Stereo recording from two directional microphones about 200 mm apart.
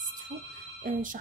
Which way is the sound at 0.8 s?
40° right (ahead or behind).